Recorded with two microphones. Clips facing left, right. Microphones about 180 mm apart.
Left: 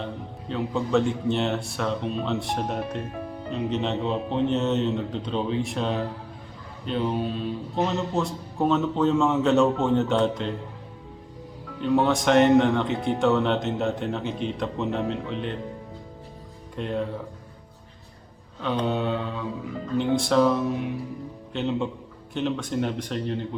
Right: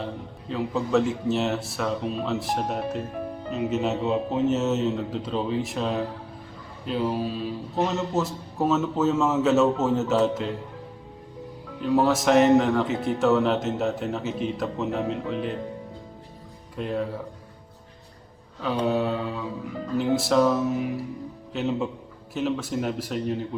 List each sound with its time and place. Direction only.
0.0 s speech: centre (ahead or behind)
11.8 s speech: 5° right (ahead or behind)
16.7 s speech: 5° right (ahead or behind)
18.6 s speech: 5° right (ahead or behind)